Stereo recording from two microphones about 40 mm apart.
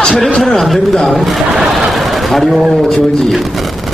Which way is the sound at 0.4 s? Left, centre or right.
Centre.